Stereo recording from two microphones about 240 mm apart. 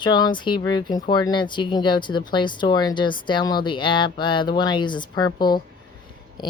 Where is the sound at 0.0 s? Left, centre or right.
Centre.